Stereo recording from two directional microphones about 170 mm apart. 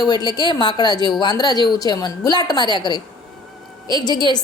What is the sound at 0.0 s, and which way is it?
A woman's voice, 25° left (ahead or behind).